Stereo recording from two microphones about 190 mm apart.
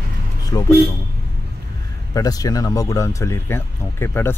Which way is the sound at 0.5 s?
20° left (ahead or behind).